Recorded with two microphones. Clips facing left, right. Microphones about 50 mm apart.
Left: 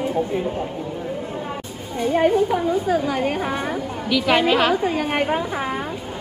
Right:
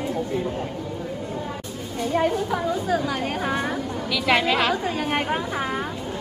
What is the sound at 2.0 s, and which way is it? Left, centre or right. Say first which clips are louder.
Speech: left 5 dB; left.